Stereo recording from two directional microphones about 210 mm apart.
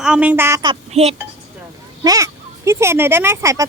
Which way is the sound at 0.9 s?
30° right (ahead or behind).